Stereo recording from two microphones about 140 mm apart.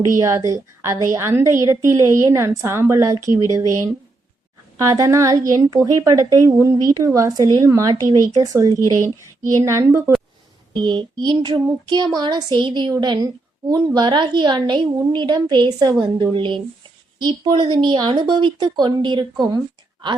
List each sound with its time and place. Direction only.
0.2 s a woman's voice: 20° right (ahead or behind)
4.8 s a woman's voice: 25° right (ahead or behind)
10.8 s speech: 35° right (ahead or behind)